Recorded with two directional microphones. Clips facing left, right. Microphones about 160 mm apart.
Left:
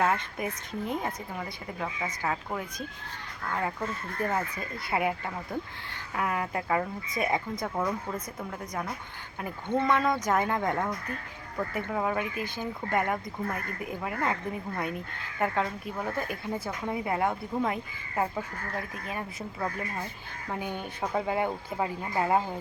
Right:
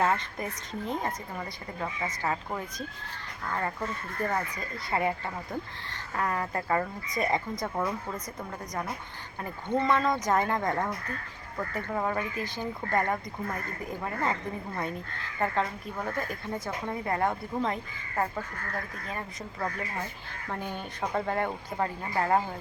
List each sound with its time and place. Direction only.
0.0 s a woman's voice: 5° left (ahead or behind)
15.4 s speech: 5° left (ahead or behind)
19.0 s speech: 5° left (ahead or behind)